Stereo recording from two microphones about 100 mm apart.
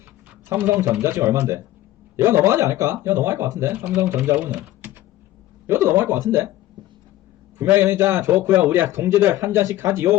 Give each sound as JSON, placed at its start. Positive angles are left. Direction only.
{"t": 0.4, "sound": "a man's voice", "side_deg": -20}
{"t": 4.8, "sound": "a sound", "side_deg": -20}
{"t": 5.6, "sound": "a man's voice", "side_deg": -25}
{"t": 7.6, "sound": "a man's voice", "side_deg": -25}